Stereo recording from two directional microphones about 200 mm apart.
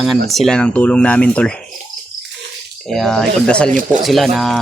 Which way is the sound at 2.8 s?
Centre (ahead or behind).